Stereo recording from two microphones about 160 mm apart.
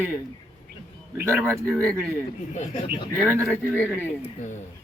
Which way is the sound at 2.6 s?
35° left (ahead or behind).